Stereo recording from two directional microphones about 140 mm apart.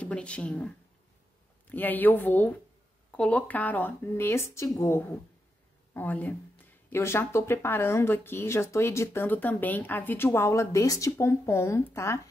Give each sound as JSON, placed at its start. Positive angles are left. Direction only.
{"t": 0.0, "sound": "speech", "side_deg": 10}